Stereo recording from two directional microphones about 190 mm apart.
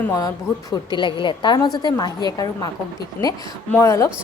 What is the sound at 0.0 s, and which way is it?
Speech, 10° left (ahead or behind).